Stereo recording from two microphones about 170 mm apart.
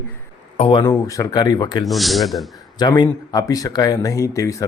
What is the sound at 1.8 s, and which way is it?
Speech, centre (ahead or behind).